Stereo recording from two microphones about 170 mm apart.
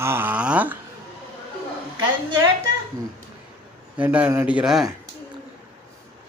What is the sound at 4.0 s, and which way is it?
Speech, 10° right (ahead or behind).